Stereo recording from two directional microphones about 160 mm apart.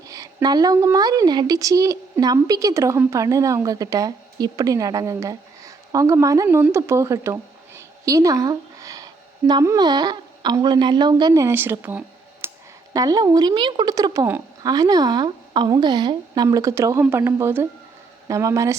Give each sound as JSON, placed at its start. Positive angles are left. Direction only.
{"t": 0.1, "sound": "a woman's voice", "side_deg": -20}
{"t": 7.8, "sound": "a sound", "side_deg": -20}
{"t": 9.5, "sound": "a woman's voice", "side_deg": -25}